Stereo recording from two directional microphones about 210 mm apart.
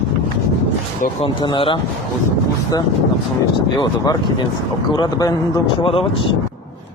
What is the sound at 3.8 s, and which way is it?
Speech, 20° left (ahead or behind).